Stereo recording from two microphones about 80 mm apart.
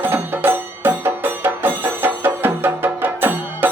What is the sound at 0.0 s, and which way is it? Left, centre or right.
Music, right.